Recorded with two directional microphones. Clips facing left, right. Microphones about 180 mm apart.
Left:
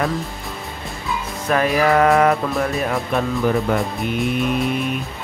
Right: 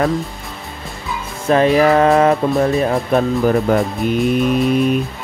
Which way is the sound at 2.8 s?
35° right (ahead or behind).